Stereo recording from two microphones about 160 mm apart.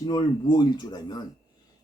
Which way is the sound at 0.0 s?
25° left (ahead or behind).